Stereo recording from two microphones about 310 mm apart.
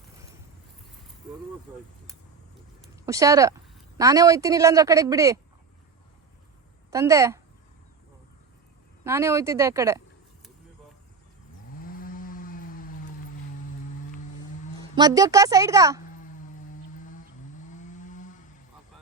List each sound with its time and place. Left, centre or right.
2.9 s speech: centre
6.9 s speech: centre
9.0 s speech: centre
11.8 s chainsaw: left
14.8 s speech: centre
17.0 s a sound: left
17.7 s chainsaw: left